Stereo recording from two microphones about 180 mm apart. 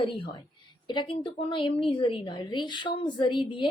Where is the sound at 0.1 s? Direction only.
25° left (ahead or behind).